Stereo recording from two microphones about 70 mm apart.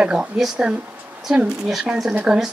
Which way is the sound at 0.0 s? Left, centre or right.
Centre.